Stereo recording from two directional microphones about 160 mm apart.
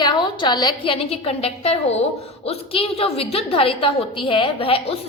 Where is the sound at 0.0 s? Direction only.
30° left (ahead or behind).